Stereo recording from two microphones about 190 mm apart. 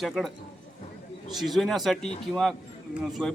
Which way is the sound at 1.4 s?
Centre (ahead or behind).